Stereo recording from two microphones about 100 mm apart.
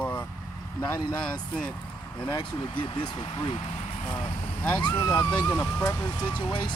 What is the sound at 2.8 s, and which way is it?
Speech, 55° left (ahead or behind).